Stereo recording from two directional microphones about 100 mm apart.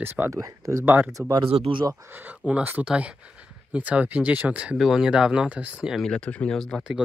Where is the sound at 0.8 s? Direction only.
15° right (ahead or behind).